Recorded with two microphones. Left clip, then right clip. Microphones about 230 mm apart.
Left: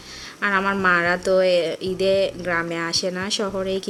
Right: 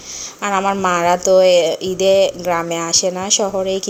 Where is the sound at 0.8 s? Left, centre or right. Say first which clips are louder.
Right 4 dB; left.